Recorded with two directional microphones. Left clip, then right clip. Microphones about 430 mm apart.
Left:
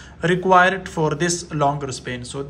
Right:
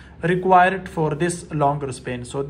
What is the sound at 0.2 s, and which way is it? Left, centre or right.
A man's voice, centre.